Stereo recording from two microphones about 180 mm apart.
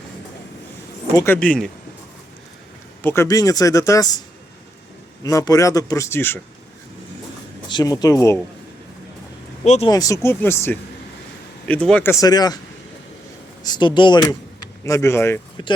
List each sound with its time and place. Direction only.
1.1 s a man's voice: 15° left (ahead or behind)
3.0 s a man's voice: 15° left (ahead or behind)
5.2 s a man's voice: 20° left (ahead or behind)
7.7 s speech: 25° left (ahead or behind)
9.6 s speech: 35° left (ahead or behind)
9.9 s a man's voice: 20° left (ahead or behind)
12.2 s speech: 20° left (ahead or behind)
13.7 s a man's voice: 25° left (ahead or behind)
15.6 s speech: 25° left (ahead or behind)